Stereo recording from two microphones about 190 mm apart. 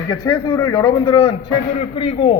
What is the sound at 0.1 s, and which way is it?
A man's voice, 20° left (ahead or behind).